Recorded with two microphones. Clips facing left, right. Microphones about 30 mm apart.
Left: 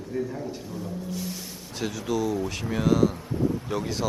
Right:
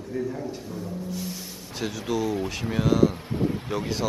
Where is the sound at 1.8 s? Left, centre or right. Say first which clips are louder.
Even; centre.